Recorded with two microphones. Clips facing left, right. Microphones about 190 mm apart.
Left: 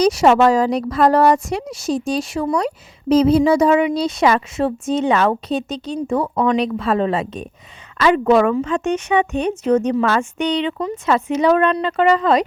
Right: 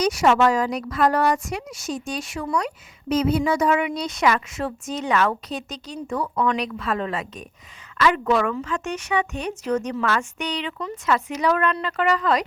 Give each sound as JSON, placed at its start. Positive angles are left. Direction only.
{"t": 0.0, "sound": "speech", "side_deg": 30}